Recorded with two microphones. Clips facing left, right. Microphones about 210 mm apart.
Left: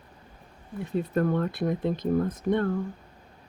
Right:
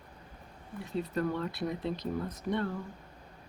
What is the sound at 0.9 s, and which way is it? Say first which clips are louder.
Speech: left 6 dB; 50° left (ahead or behind).